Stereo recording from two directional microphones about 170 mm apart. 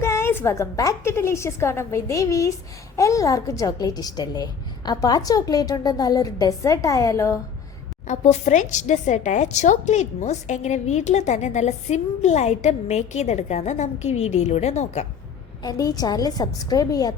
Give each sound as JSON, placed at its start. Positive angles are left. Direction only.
{"t": 0.0, "sound": "a woman's voice", "side_deg": 15}
{"t": 8.0, "sound": "speech", "side_deg": 40}
{"t": 15.6, "sound": "a woman's voice", "side_deg": 20}